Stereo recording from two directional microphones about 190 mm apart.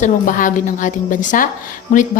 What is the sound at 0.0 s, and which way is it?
A woman's voice, 45° left (ahead or behind).